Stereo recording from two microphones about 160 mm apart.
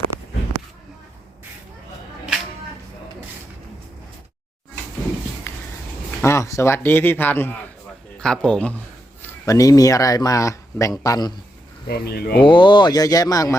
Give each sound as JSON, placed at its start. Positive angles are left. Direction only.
{"t": 0.1, "sound": "a sound", "side_deg": -15}
{"t": 5.5, "sound": "a sound", "side_deg": 15}
{"t": 6.2, "sound": "speech", "side_deg": 20}
{"t": 9.2, "sound": "speech", "side_deg": 20}
{"t": 11.9, "sound": "speech", "side_deg": 80}
{"t": 12.4, "sound": "speech", "side_deg": 30}